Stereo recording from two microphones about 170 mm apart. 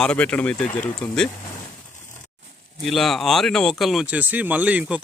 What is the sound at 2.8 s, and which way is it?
Speech, centre (ahead or behind).